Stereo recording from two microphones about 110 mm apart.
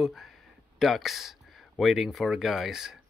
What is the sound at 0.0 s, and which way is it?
Speech, centre (ahead or behind).